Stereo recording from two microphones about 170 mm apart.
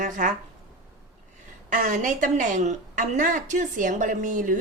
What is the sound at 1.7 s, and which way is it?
A woman's voice, 50° right (ahead or behind).